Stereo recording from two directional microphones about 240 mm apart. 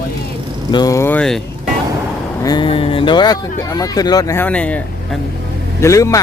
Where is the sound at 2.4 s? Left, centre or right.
Centre.